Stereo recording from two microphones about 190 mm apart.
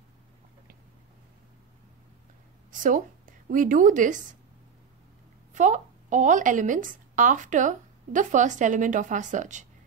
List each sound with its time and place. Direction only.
2.7 s a woman's voice: 45° right (ahead or behind)
5.5 s speech: 40° right (ahead or behind)